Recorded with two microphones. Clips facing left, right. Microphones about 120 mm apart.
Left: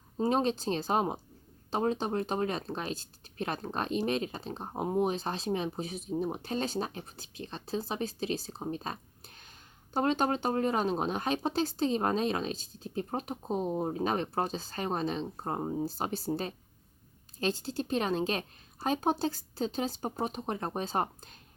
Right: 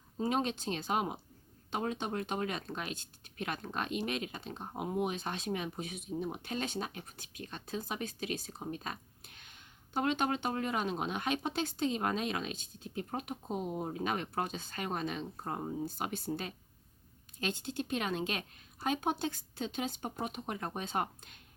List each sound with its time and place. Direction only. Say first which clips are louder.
0.2 s speech: left 5 dB; 35° left (ahead or behind)